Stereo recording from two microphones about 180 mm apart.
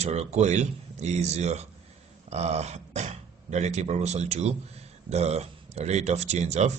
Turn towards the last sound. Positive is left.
turn(degrees=-40)  # may be behind; listen again after turning